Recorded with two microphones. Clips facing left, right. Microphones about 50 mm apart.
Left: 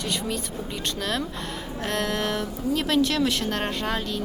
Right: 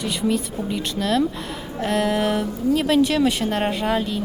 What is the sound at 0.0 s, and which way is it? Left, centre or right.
Speech, centre.